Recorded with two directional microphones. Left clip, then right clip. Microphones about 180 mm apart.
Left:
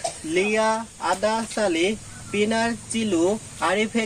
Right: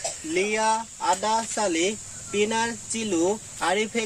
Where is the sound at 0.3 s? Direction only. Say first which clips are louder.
Left 2 dB; 15° right (ahead or behind).